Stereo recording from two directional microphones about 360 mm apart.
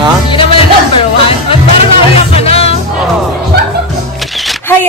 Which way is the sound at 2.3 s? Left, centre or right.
Centre.